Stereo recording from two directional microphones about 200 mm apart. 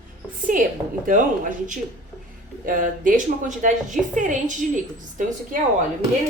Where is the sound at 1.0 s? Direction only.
40° right (ahead or behind).